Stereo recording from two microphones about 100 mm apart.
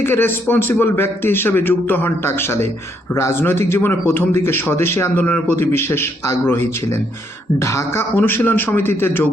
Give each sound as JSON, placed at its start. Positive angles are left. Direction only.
{"t": 0.0, "sound": "a man's voice", "side_deg": 20}